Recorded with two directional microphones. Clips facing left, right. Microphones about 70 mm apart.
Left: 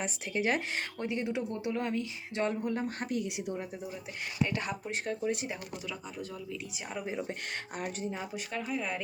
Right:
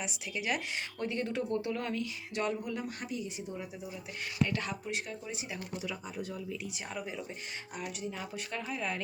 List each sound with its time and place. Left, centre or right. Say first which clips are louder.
0.0 s speech: left 5 dB; left
0.9 s speech: even; centre; by 3.2 s left
3.2 s a woman's voice: left 5 dB; left
4.4 s speech: left 1 dB; left
7.1 s speech: left 5 dB; left
8.1 s speech: left 3 dB; left
8.5 s speech: left 2 dB; centre